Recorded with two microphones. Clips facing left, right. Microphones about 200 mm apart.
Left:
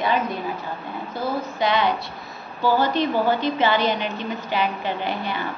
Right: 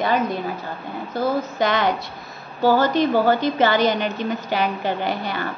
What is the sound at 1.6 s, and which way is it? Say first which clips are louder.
A woman's voice: even; 45° right (ahead or behind).